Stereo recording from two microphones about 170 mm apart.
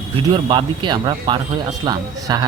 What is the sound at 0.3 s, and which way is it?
Speech, 30° right (ahead or behind).